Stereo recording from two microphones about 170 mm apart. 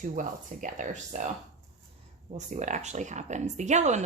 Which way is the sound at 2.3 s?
45° right (ahead or behind).